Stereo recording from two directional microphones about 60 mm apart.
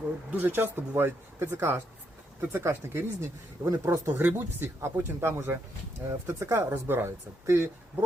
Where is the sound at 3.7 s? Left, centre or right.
Right.